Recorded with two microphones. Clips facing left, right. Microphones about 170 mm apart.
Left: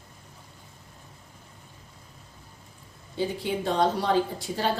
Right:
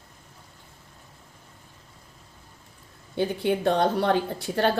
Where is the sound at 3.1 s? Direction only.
60° right (ahead or behind).